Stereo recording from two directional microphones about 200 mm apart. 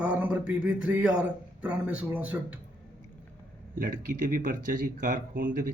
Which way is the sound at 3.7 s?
45° right (ahead or behind).